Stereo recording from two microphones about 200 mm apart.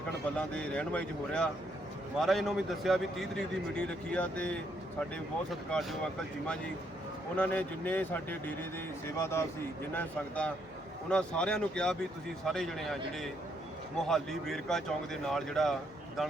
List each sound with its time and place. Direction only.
0.3 s a man's voice: 5° left (ahead or behind)
7.3 s a man's voice: 10° left (ahead or behind)
14.1 s a man's voice: centre (ahead or behind)